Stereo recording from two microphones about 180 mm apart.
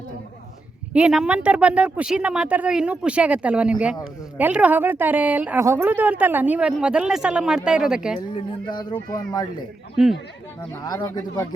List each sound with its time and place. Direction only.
0.9 s speech: 5° right (ahead or behind)
8.6 s speech: 25° left (ahead or behind)
10.8 s speech: 20° left (ahead or behind)